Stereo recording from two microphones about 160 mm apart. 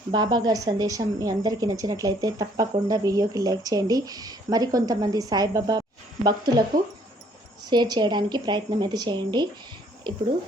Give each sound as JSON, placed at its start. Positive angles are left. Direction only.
{"t": 0.1, "sound": "a woman's voice", "side_deg": -25}
{"t": 7.7, "sound": "a woman's voice", "side_deg": -25}